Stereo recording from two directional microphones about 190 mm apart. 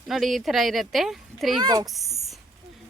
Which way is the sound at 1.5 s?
20° right (ahead or behind).